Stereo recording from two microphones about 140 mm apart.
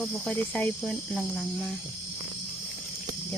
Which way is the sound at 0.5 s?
5° left (ahead or behind).